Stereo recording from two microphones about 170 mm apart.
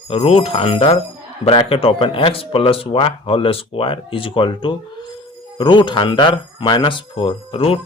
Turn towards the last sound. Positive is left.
turn(degrees=35)  # may be behind; listen again after turning